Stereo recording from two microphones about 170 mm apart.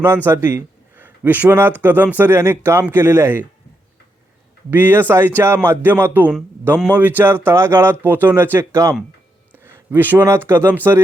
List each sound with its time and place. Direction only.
0.3 s speech: 10° right (ahead or behind)
4.7 s speech: 10° right (ahead or behind)